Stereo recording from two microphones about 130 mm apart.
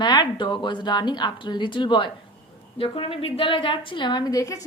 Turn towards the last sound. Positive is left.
turn(degrees=25)  # may be behind; listen again after turning